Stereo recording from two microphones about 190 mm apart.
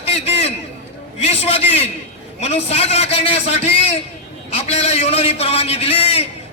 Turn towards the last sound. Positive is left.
turn(degrees=30)  # may be behind; listen again after turning